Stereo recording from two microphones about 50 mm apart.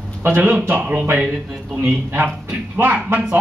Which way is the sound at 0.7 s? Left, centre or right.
Right.